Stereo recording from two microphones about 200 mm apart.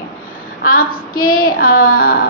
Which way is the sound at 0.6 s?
45° left (ahead or behind).